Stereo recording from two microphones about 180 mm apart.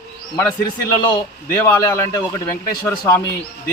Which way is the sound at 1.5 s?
15° left (ahead or behind).